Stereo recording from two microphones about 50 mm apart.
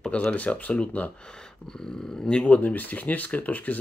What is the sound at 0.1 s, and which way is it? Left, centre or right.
Speech, left.